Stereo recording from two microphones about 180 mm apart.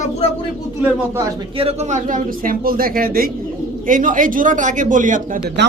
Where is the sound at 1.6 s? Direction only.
35° right (ahead or behind).